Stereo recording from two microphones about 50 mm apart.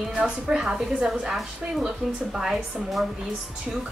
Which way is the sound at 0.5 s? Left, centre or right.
Centre.